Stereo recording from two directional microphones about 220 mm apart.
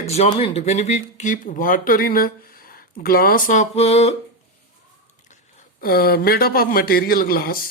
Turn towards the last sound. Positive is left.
turn(degrees=40)  # may be behind; listen again after turning